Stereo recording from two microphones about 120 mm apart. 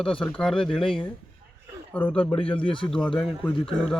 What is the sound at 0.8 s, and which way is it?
Speech, 45° left (ahead or behind).